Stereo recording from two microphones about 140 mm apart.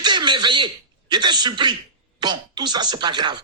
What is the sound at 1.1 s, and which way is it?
Speech, 30° right (ahead or behind).